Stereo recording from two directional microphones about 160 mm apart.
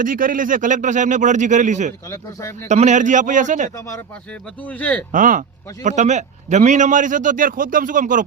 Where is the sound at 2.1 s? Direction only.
20° left (ahead or behind).